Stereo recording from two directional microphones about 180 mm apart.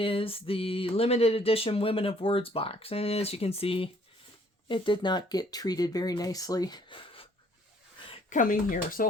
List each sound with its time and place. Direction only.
0.0 s speech: 30° left (ahead or behind)
8.3 s speech: 50° left (ahead or behind)